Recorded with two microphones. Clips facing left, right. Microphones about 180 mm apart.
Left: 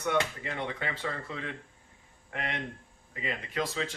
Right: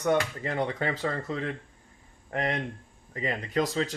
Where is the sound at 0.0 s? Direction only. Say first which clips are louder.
Right 4 dB; 40° right (ahead or behind).